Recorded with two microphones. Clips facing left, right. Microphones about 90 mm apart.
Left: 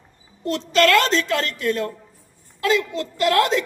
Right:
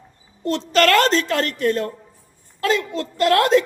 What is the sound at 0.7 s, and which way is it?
A woman's voice, 40° right (ahead or behind).